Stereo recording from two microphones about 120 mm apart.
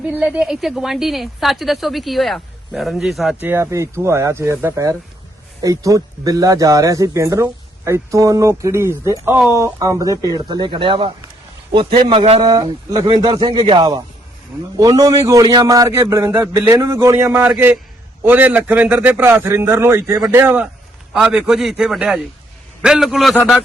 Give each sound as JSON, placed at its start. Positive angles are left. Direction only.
{"t": 0.0, "sound": "a woman's voice", "side_deg": -15}
{"t": 3.4, "sound": "a man's voice", "side_deg": -20}
{"t": 5.6, "sound": "a man's voice", "side_deg": -25}
{"t": 12.4, "sound": "a man's voice", "side_deg": -35}